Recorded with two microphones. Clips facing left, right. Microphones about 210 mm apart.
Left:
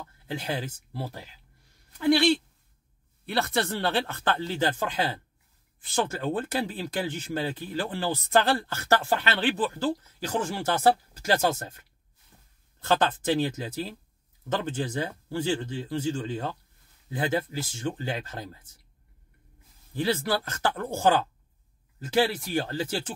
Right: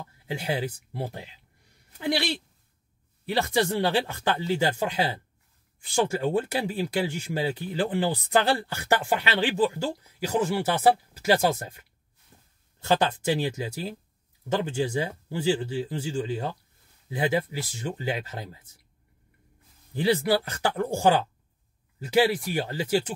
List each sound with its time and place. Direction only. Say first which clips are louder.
0.3 s speech: right 3 dB; 10° right (ahead or behind)
3.4 s speech: right 3 dB; 15° right (ahead or behind)
12.3 s a sound: right 2 dB; 25° right (ahead or behind)
12.8 s speech: right 1 dB; 10° right (ahead or behind)
19.9 s speech: right 4 dB; 15° right (ahead or behind)